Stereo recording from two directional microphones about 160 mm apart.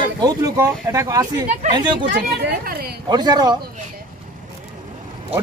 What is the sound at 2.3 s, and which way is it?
Speech, 80° right.